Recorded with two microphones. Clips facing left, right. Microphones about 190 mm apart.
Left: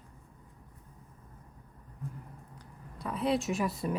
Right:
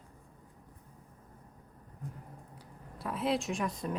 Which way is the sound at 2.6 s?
Centre (ahead or behind).